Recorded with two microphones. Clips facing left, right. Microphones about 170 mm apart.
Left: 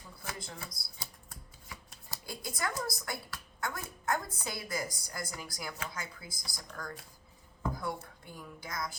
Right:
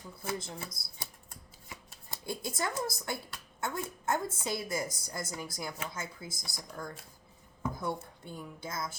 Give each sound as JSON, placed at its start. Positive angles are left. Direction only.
{"t": 0.2, "sound": "speech", "side_deg": -25}